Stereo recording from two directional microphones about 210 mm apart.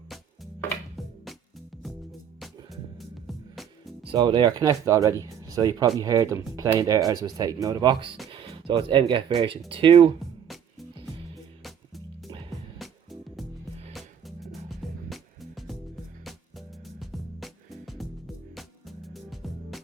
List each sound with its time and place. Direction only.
0.9 s music: centre (ahead or behind)
4.1 s speech: 20° right (ahead or behind)
10.5 s music: centre (ahead or behind)